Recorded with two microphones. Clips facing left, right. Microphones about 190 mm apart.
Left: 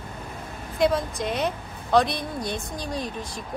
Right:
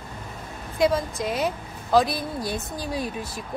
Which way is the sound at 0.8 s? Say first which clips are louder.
Right 1 dB; centre (ahead or behind).